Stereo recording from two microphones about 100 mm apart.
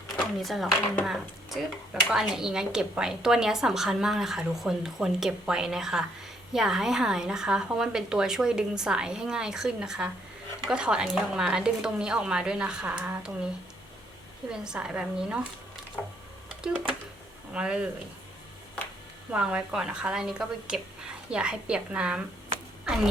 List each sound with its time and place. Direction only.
0.2 s a woman's voice: centre (ahead or behind)
14.5 s a woman's voice: 10° right (ahead or behind)
19.3 s a woman's voice: 10° right (ahead or behind)